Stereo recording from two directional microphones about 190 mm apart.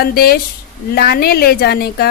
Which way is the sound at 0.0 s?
50° left (ahead or behind).